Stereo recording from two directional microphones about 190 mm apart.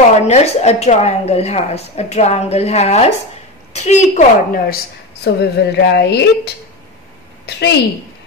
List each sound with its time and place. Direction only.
0.2 s a woman's voice: 35° left (ahead or behind)
5.2 s a woman's voice: 60° left (ahead or behind)